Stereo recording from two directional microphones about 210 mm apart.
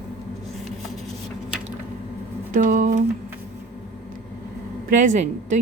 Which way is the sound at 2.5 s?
40° right (ahead or behind).